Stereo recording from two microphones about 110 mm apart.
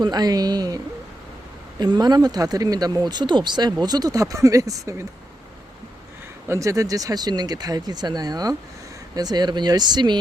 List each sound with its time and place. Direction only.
0.0 s speech: 40° right (ahead or behind)
1.8 s speech: 40° right (ahead or behind)
6.5 s speech: 30° right (ahead or behind)